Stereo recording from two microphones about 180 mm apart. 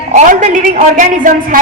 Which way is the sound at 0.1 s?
45° right (ahead or behind).